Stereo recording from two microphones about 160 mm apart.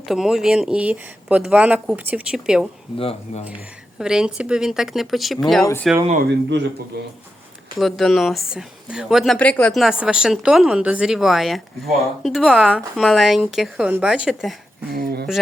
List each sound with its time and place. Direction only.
0.1 s speech: centre (ahead or behind)
3.0 s speech: 35° left (ahead or behind)
3.9 s a woman's voice: 5° right (ahead or behind)
6.1 s speech: 90° right
7.8 s speech: centre (ahead or behind)
14.9 s speech: 90° right